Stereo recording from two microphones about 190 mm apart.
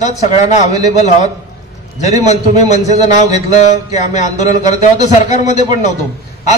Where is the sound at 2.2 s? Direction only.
35° left (ahead or behind).